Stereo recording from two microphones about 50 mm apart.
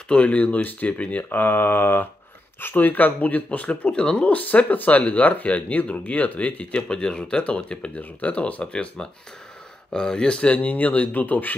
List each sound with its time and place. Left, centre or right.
0.1 s speech: left
8.0 s speech: left